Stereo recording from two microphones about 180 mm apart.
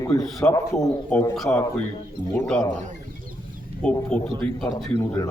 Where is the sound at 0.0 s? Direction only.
20° left (ahead or behind).